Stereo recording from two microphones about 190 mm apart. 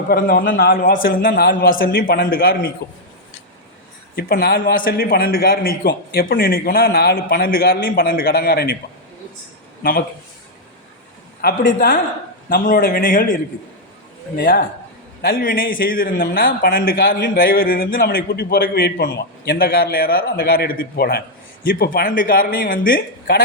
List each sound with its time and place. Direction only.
0.1 s a man's voice: 50° left (ahead or behind)
4.1 s a man's voice: 55° left (ahead or behind)
11.4 s a man's voice: 50° left (ahead or behind)